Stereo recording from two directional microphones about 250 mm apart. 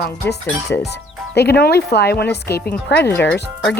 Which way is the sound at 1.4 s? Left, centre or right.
Left.